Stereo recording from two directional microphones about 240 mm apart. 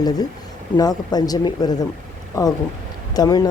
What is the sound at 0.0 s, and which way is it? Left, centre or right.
Speech, centre.